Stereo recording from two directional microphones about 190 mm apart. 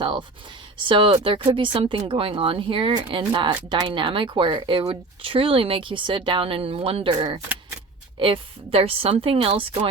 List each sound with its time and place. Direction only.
0.9 s speech: 25° right (ahead or behind)